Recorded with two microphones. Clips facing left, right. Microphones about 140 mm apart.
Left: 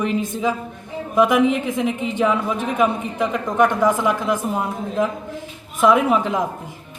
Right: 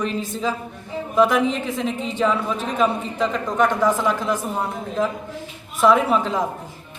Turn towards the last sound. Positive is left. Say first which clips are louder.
# left 1 dB
turn(degrees=15)  # may be behind; listen again after turning